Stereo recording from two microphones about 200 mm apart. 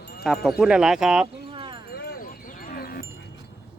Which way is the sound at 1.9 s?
50° left (ahead or behind).